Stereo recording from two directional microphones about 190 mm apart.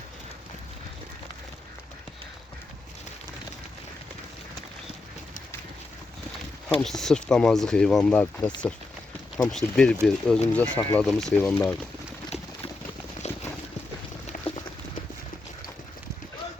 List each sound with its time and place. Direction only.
6.7 s speech: centre (ahead or behind)
11.4 s speech: 15° left (ahead or behind)
13.2 s clip-clop: 35° left (ahead or behind)
14.5 s clip-clop: 30° left (ahead or behind)